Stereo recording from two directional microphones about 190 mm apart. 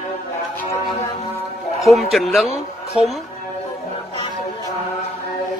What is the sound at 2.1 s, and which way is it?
Speech, centre (ahead or behind).